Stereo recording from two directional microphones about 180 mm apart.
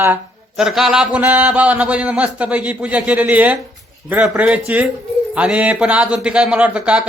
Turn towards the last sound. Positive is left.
turn(degrees=-5)  # may be behind; listen again after turning